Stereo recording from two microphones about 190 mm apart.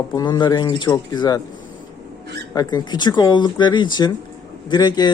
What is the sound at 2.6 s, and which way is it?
A man's voice, 20° left (ahead or behind).